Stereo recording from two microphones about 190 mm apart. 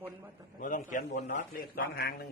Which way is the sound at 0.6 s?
40° left (ahead or behind).